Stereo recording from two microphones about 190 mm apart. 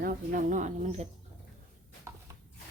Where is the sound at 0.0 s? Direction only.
45° right (ahead or behind).